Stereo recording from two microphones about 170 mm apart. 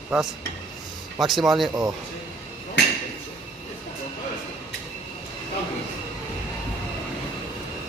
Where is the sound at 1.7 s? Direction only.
20° right (ahead or behind).